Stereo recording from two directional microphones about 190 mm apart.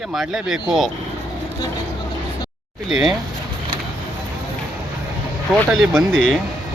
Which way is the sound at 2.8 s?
5° right (ahead or behind).